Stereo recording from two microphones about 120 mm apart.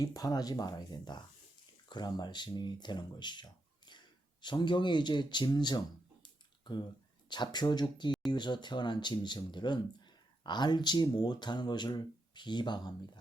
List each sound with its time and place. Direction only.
0.0 s speech: 30° left (ahead or behind)
6.2 s a sound: 40° left (ahead or behind)
7.3 s speech: 40° left (ahead or behind)